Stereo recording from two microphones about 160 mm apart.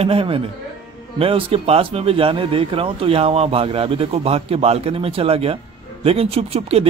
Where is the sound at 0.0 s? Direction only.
35° right (ahead or behind).